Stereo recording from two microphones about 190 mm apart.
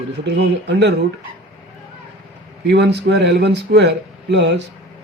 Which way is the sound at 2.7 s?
65° right (ahead or behind).